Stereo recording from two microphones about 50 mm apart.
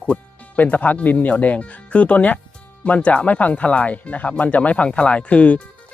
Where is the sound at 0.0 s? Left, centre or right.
Left.